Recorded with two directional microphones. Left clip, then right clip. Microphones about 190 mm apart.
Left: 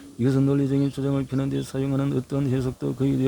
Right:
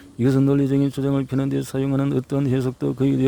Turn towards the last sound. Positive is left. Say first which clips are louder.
# right 4 dB
turn(degrees=-45)  # may be behind; listen again after turning